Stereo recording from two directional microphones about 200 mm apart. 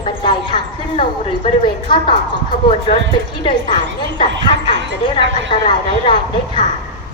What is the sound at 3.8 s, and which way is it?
Speech, 65° right (ahead or behind).